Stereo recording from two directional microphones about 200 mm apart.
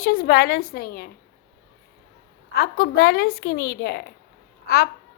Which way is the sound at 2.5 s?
50° left (ahead or behind).